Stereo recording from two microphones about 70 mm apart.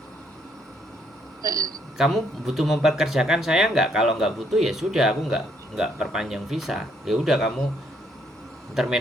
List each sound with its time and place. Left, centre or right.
1.4 s a woman's voice: right
2.0 s speech: centre
8.7 s speech: centre